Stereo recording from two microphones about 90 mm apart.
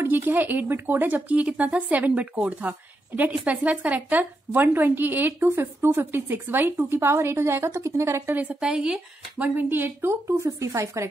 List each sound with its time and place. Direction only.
0.0 s a woman's voice: 25° right (ahead or behind)
8.4 s a woman's voice: 10° right (ahead or behind)
9.6 s speech: 20° right (ahead or behind)